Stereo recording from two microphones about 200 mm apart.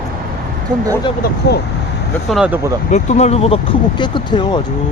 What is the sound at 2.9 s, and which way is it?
Speech, 35° left (ahead or behind).